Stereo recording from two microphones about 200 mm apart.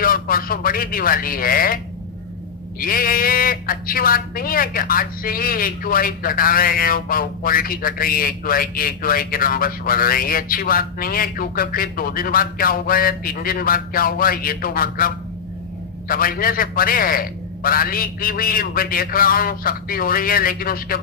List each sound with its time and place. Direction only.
0.0 s a woman's voice: 45° left (ahead or behind)